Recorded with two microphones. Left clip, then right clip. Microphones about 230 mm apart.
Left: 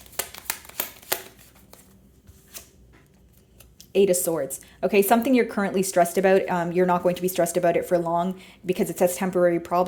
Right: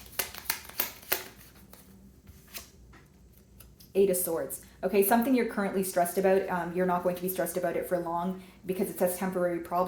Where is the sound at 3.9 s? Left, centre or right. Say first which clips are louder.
Left 6 dB; left.